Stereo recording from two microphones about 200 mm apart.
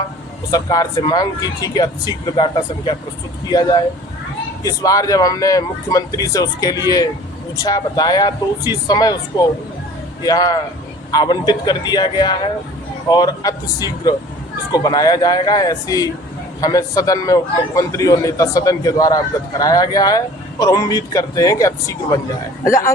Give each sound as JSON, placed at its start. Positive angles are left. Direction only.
{"t": 0.5, "sound": "a man's voice", "side_deg": 20}
{"t": 10.2, "sound": "a man's voice", "side_deg": 20}